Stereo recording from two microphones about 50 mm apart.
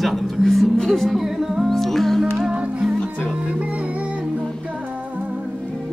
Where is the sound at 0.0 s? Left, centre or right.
Centre.